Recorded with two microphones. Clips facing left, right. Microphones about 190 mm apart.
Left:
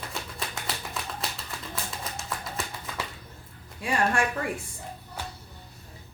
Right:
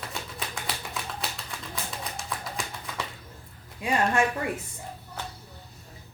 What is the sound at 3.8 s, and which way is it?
Speech, 20° right (ahead or behind).